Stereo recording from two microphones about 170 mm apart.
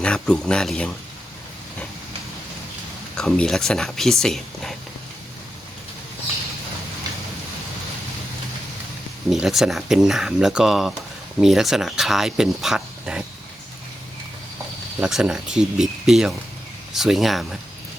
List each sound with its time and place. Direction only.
0.0 s speech: 5° left (ahead or behind)
3.2 s speech: 5° left (ahead or behind)
9.3 s speech: centre (ahead or behind)
15.0 s speech: 5° right (ahead or behind)